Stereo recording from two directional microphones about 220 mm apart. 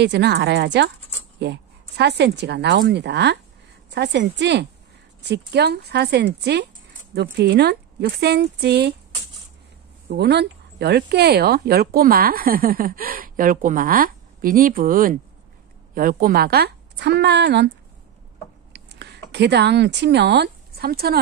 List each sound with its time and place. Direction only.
0.0 s a woman's voice: 50° right (ahead or behind)
10.0 s a woman's voice: 50° right (ahead or behind)
18.7 s a sound: 50° right (ahead or behind)
19.3 s a woman's voice: 50° right (ahead or behind)